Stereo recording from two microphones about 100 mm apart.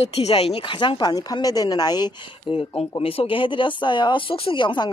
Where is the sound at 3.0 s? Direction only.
70° left (ahead or behind); by 4.9 s 50° left (ahead or behind).